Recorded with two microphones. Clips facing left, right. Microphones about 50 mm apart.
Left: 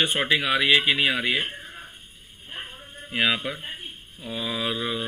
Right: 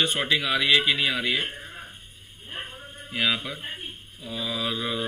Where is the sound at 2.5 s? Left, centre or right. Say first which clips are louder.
Right 1 dB; right.